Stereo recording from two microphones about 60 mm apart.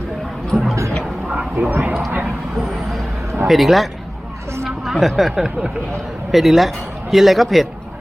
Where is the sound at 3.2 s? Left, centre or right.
Right.